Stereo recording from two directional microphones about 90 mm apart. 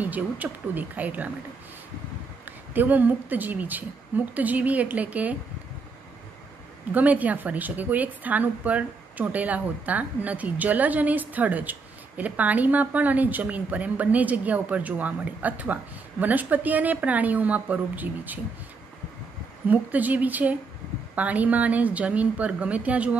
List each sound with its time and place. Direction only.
0.0 s a woman's voice: 20° right (ahead or behind)
2.7 s a woman's voice: 20° right (ahead or behind)
6.9 s a woman's voice: 15° right (ahead or behind)
19.7 s a woman's voice: 20° right (ahead or behind)